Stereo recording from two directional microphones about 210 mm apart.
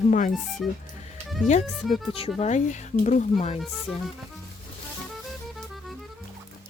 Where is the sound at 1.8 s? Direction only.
Centre (ahead or behind).